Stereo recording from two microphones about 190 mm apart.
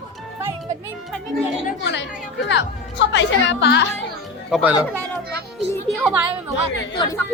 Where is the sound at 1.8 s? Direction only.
70° left (ahead or behind).